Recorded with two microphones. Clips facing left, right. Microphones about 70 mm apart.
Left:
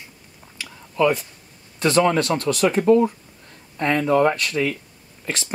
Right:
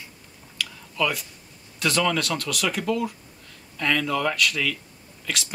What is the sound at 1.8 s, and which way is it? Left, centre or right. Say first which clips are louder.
Speech: left 6 dB; left.